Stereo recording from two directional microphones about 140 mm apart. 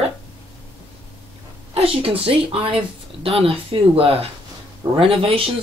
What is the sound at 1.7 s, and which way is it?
Speech, 40° right (ahead or behind).